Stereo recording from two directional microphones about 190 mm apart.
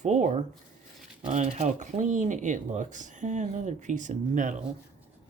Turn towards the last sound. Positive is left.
turn(degrees=-40)  # may be behind; listen again after turning